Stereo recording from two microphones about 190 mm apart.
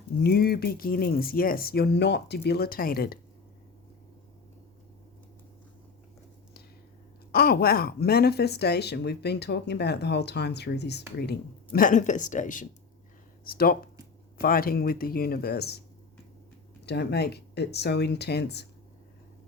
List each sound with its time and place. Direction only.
0.2 s speech: 55° left (ahead or behind)
7.3 s speech: 55° left (ahead or behind)
16.8 s speech: 60° left (ahead or behind)